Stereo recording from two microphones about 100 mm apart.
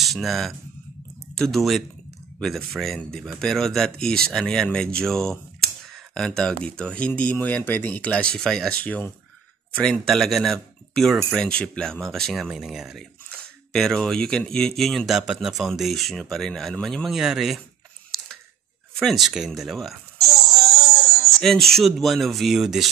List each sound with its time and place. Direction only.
0.0 s speech: centre (ahead or behind)
18.9 s speech: centre (ahead or behind)
21.4 s speech: 5° left (ahead or behind)